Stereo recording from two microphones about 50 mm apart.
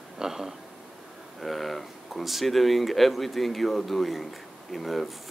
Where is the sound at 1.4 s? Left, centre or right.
Centre.